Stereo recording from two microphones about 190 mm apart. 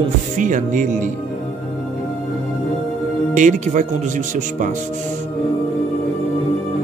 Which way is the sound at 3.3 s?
40° right (ahead or behind).